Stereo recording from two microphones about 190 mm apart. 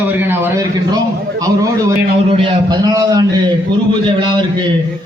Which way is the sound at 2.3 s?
25° right (ahead or behind).